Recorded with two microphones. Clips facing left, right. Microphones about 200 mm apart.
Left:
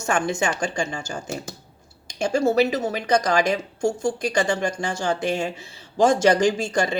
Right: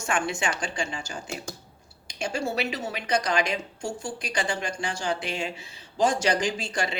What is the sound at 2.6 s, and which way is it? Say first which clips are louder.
Speech: left 9 dB; 40° left (ahead or behind).